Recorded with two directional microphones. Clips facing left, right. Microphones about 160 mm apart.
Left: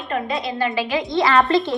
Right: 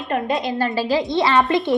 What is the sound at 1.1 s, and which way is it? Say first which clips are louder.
Speech: left 3 dB; 20° right (ahead or behind).